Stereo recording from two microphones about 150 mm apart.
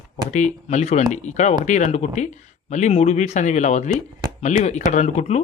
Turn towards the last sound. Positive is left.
turn(degrees=45)  # may be behind; listen again after turning